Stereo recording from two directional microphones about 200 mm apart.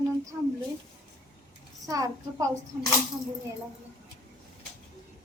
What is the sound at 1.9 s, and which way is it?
Speech, 20° right (ahead or behind).